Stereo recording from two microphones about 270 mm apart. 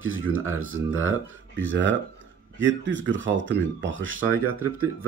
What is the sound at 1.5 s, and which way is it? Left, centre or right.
Speech, right.